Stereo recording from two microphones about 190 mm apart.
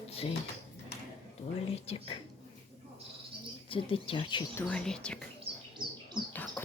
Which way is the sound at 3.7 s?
30° left (ahead or behind).